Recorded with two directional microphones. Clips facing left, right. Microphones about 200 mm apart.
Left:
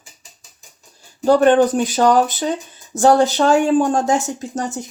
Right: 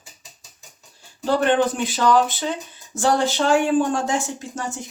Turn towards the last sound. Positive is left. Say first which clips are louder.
# left 5 dB
turn(degrees=40)  # may be behind; listen again after turning